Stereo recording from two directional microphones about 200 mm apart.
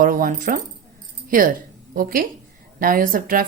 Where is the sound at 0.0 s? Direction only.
45° right (ahead or behind).